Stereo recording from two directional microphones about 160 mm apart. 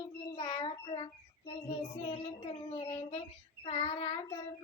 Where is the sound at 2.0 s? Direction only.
35° left (ahead or behind).